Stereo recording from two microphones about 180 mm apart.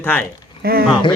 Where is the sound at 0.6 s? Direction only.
55° right (ahead or behind).